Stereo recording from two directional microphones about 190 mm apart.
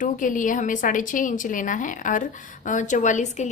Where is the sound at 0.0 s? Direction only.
45° left (ahead or behind).